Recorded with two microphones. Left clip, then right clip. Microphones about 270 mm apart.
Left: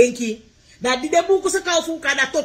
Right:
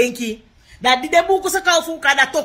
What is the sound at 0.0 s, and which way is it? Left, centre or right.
A woman's voice, centre.